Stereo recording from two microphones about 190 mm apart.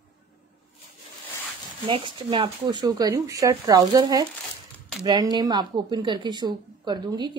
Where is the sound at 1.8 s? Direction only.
25° right (ahead or behind).